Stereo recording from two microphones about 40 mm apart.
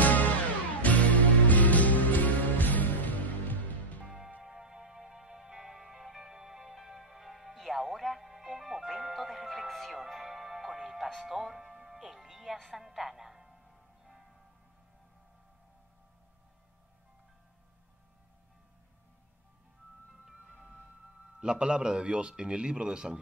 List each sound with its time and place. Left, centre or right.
0.0 s music: left
4.4 s music: centre
21.4 s a man's voice: right